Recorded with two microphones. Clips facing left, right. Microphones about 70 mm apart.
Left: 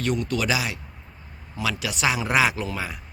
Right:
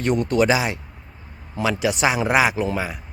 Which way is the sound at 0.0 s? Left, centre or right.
Right.